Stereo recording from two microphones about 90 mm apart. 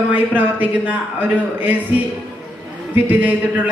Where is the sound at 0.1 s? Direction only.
20° right (ahead or behind).